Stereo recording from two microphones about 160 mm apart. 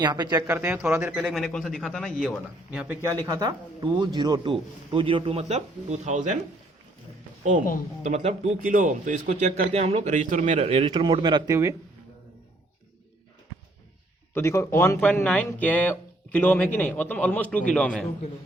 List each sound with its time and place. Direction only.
0.0 s a man's voice: 25° right (ahead or behind)
1.2 s a man's voice: centre (ahead or behind); by 6.2 s 45° right (ahead or behind)
8.0 s speech: 45° right (ahead or behind)
10.9 s speech: 30° right (ahead or behind)
14.3 s speech: 15° left (ahead or behind)